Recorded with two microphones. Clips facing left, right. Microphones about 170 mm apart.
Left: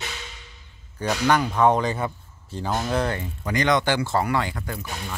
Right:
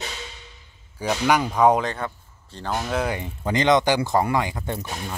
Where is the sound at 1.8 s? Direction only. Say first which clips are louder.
Left 2 dB; 5° left (ahead or behind).